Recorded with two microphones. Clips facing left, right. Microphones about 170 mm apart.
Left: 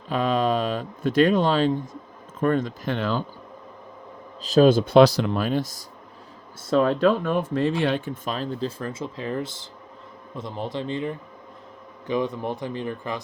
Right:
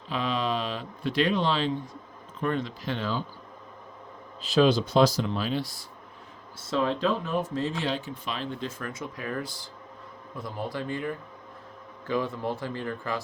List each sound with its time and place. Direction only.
0.1 s speech: 45° left (ahead or behind)
4.4 s a man's voice: 45° left (ahead or behind); by 13.2 s 20° left (ahead or behind)